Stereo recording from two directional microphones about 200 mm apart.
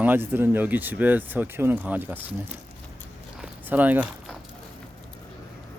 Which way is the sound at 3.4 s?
10° right (ahead or behind).